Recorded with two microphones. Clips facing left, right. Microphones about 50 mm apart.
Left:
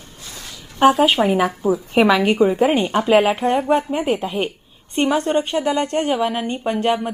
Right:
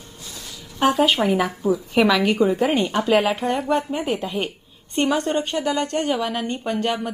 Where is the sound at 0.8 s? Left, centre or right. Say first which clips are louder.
Left 4 dB; centre.